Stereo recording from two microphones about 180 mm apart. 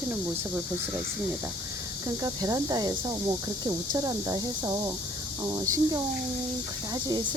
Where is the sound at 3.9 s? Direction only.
20° right (ahead or behind).